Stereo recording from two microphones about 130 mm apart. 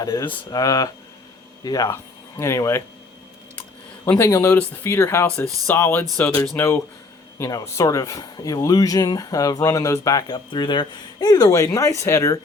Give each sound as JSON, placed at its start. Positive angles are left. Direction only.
{"t": 0.0, "sound": "speech", "side_deg": 30}
{"t": 4.0, "sound": "speech", "side_deg": 20}